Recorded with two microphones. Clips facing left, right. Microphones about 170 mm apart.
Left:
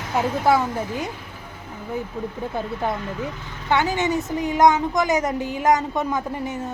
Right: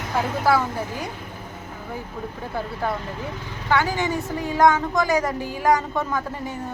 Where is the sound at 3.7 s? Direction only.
20° left (ahead or behind).